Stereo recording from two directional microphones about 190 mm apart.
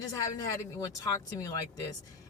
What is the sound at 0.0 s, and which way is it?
Speech, 20° left (ahead or behind).